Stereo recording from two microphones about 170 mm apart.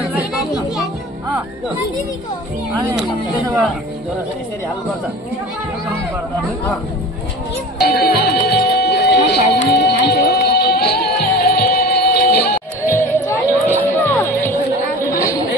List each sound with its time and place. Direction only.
0.1 s chatter: centre (ahead or behind)
7.8 s music: 70° left (ahead or behind)
12.9 s music: 15° left (ahead or behind)